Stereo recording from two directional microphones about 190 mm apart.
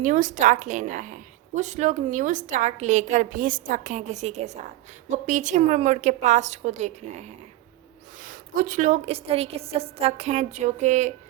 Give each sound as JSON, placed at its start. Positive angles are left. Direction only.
{"t": 0.0, "sound": "a woman's voice", "side_deg": -40}